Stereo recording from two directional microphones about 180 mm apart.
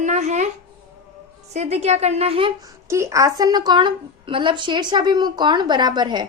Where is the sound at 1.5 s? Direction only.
40° right (ahead or behind).